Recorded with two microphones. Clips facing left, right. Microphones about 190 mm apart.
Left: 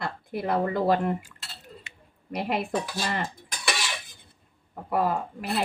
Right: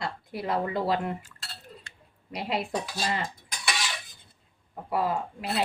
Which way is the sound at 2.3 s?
55° left (ahead or behind).